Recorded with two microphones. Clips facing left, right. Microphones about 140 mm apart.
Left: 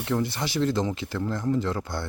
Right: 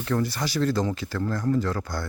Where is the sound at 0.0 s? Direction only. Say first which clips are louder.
Right 1 dB; 20° left (ahead or behind).